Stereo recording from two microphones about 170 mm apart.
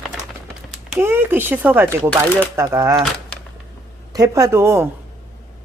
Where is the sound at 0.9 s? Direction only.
15° right (ahead or behind).